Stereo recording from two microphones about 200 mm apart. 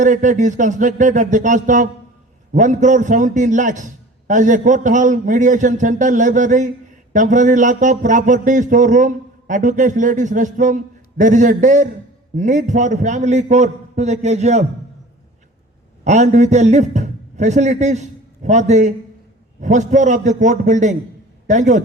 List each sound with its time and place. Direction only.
0.0 s a man's voice: 40° right (ahead or behind)
16.0 s a man's voice: 35° right (ahead or behind)